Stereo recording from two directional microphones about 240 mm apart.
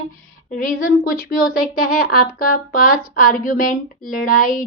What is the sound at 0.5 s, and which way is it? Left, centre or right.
A woman's voice, left.